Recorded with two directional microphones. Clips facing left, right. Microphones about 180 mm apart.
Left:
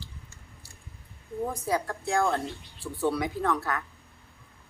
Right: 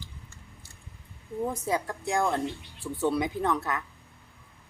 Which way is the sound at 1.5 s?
20° right (ahead or behind).